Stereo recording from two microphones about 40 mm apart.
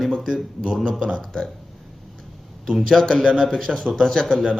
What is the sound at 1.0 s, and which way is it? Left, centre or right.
Speech, centre.